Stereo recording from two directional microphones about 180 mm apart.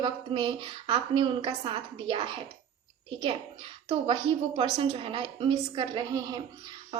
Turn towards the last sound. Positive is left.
turn(degrees=-25)  # may be behind; listen again after turning